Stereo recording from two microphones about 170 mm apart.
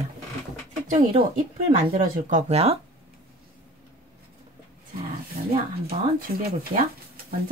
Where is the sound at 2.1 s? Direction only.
50° right (ahead or behind).